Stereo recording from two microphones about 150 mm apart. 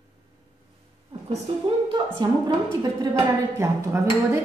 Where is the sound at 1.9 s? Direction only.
30° right (ahead or behind).